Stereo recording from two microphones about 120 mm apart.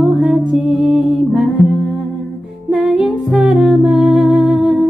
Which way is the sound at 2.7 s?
5° right (ahead or behind).